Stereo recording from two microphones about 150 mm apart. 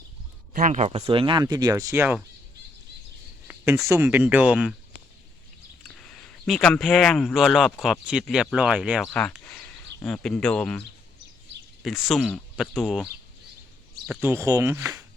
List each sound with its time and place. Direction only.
0.5 s speech: 55° right (ahead or behind); by 2.1 s 20° right (ahead or behind)
3.8 s speech: 15° right (ahead or behind)
5.8 s speech: 5° left (ahead or behind)
14.2 s speech: 15° right (ahead or behind)